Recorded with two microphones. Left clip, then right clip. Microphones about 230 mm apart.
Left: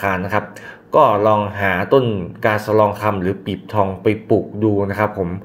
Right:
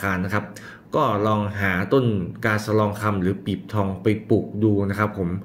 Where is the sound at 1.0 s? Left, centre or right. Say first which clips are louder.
Left 7 dB; left.